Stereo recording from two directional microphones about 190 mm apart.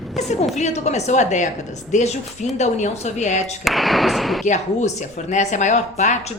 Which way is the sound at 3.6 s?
Centre (ahead or behind).